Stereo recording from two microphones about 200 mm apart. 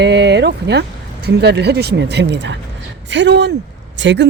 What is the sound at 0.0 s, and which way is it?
Speech, 60° right (ahead or behind).